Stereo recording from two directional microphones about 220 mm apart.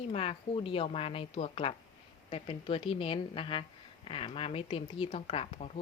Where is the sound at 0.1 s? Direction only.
25° left (ahead or behind).